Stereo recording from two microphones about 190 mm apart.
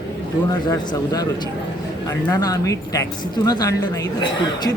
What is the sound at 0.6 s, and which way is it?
A man's voice, 20° left (ahead or behind).